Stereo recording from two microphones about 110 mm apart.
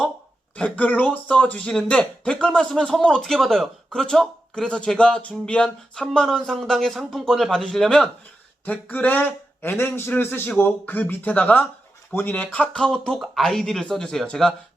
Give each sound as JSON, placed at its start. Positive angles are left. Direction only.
{"t": 0.5, "sound": "a man's voice", "side_deg": 10}